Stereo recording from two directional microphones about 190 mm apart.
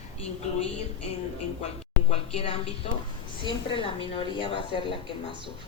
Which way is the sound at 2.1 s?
30° left (ahead or behind).